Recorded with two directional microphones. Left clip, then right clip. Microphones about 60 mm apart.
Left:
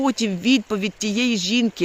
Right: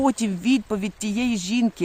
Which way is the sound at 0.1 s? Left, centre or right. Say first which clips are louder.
Left 3 dB; right.